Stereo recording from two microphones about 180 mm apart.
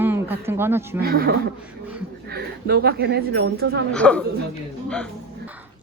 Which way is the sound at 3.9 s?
5° left (ahead or behind).